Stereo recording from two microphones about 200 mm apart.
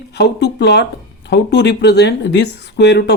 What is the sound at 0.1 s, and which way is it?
Speech, 55° left (ahead or behind).